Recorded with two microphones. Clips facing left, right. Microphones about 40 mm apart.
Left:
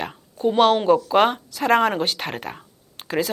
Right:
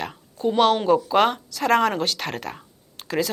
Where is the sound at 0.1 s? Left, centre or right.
Centre.